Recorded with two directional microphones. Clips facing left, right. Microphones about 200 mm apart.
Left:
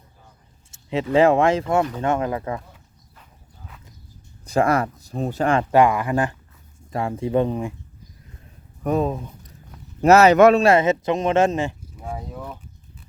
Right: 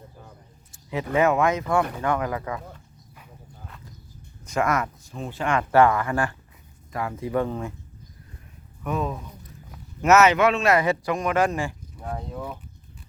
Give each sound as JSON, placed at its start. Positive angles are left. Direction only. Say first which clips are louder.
{"t": 0.7, "sound": "a sound", "louder": "left 5 dB", "side_deg": 25}
{"t": 1.1, "sound": "speech", "louder": "left 5 dB", "side_deg": 30}
{"t": 4.4, "sound": "speech", "louder": "left 5 dB", "side_deg": 30}
{"t": 5.7, "sound": "speech", "louder": "even", "side_deg": 15}
{"t": 8.8, "sound": "speech", "louder": "left 6 dB", "side_deg": 35}
{"t": 11.9, "sound": "speech", "louder": "even", "side_deg": 5}